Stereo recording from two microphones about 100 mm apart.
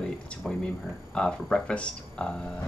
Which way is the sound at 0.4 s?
5° left (ahead or behind).